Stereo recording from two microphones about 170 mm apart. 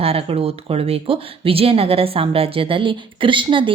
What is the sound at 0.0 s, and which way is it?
Speech, 35° right (ahead or behind).